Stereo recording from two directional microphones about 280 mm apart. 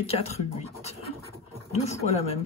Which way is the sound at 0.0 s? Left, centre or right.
Left.